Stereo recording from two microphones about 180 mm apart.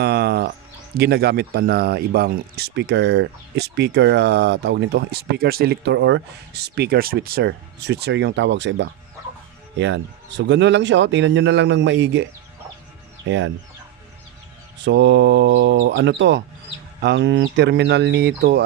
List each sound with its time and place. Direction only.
0.0 s music: 65° right (ahead or behind)
0.9 s speech: 60° right (ahead or behind); by 12.3 s 80° right
13.2 s speech: 90° right
14.8 s speech: 80° right; by 18.6 s 65° right (ahead or behind)